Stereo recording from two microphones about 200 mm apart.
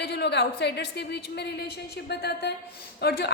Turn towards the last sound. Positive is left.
turn(degrees=55)  # may be behind; listen again after turning